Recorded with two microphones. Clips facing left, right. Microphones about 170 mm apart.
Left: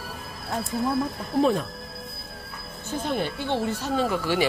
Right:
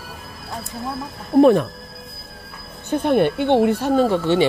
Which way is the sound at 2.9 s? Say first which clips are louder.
Right 10 dB; 60° right (ahead or behind).